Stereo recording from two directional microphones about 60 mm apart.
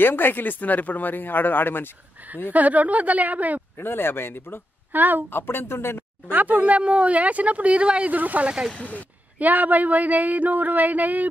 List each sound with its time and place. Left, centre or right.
0.0 s a man's voice: left
2.5 s speech: right
3.7 s a man's voice: left
4.9 s a woman's voice: right
5.3 s a man's voice: left
6.3 s speech: right
8.7 s speech: left
9.4 s speech: right